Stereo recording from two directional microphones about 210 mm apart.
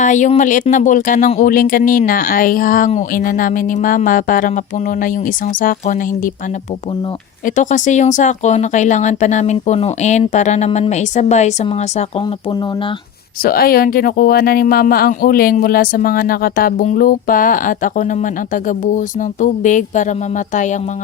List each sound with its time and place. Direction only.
0.0 s speech: 35° left (ahead or behind)
7.4 s speech: 35° left (ahead or behind)
13.4 s speech: 45° left (ahead or behind)